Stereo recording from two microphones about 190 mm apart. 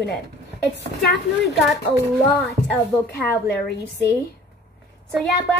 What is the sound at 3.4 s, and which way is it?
Speech, 60° left (ahead or behind).